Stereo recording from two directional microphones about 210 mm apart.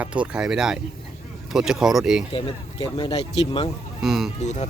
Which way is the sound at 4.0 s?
Centre (ahead or behind).